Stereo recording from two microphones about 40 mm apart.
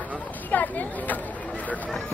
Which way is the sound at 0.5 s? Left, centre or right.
Left.